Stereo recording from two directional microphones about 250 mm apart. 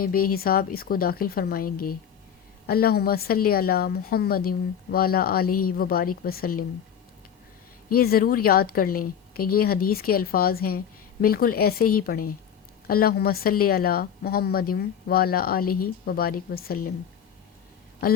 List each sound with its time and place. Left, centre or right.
0.0 s a woman's voice: left
5.5 s a woman's voice: left
5.7 s a woman's voice: left
7.9 s a woman's voice: left